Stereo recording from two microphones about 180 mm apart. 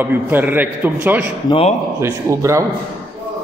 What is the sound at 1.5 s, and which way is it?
Speech, 30° left (ahead or behind).